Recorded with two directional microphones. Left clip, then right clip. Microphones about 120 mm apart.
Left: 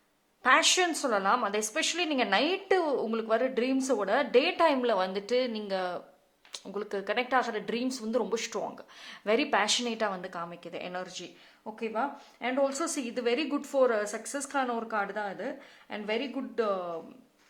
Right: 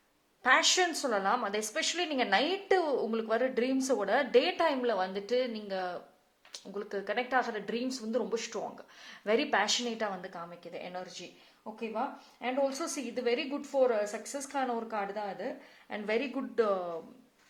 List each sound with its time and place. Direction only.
0.4 s a woman's voice: 10° left (ahead or behind)
12.4 s a woman's voice: 20° left (ahead or behind)
15.9 s speech: 15° right (ahead or behind); by 17.0 s centre (ahead or behind)